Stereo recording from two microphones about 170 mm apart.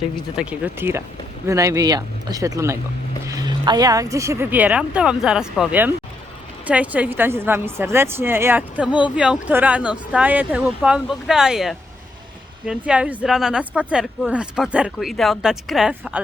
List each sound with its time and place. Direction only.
0.3 s speech: 10° right (ahead or behind)